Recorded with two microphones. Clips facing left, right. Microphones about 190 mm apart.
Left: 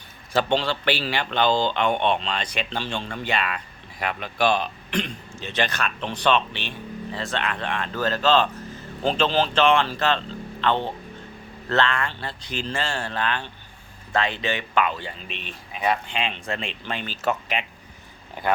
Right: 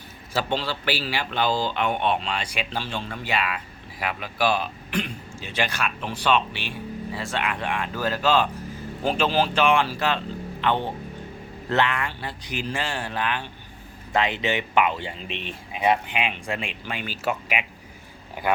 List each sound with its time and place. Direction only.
0.3 s a man's voice: 5° right (ahead or behind)